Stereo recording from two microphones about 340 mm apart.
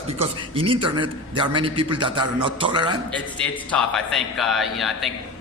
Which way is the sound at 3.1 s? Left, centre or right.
Centre.